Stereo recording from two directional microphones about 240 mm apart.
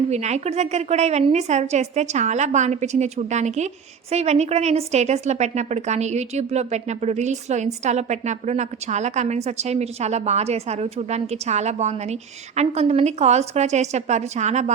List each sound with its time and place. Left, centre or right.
0.1 s a woman's voice: right